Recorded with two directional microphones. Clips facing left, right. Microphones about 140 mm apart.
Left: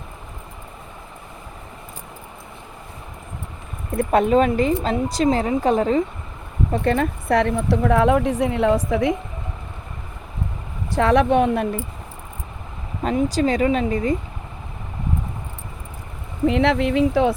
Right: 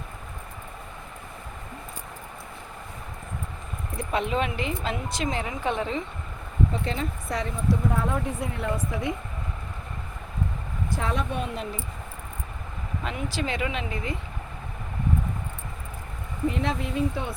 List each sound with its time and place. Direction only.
3.9 s speech: 50° left (ahead or behind)
6.7 s speech: 60° left (ahead or behind); by 9.1 s 90° left
10.9 s speech: 75° left (ahead or behind); by 11.9 s 60° left (ahead or behind)
13.0 s speech: 40° left (ahead or behind)
16.5 s speech: 85° left